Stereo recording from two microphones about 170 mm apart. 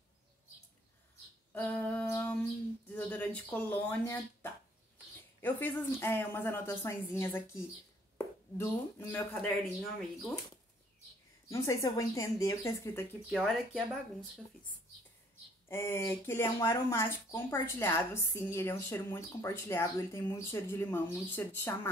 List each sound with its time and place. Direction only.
1.5 s humming: 10° left (ahead or behind)
2.9 s a woman's voice: 10° left (ahead or behind)
11.4 s a woman's voice: 20° left (ahead or behind)
13.3 s speech: centre (ahead or behind)
15.7 s a woman's voice: 15° left (ahead or behind)